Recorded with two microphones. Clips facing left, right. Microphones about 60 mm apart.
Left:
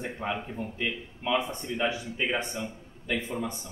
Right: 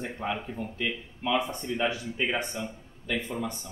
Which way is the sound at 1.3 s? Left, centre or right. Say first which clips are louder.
Even; left.